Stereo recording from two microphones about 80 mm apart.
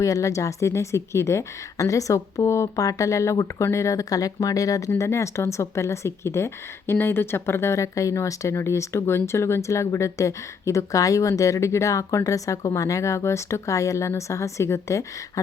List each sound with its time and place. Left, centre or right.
0.0 s speech: left
4.9 s speech: left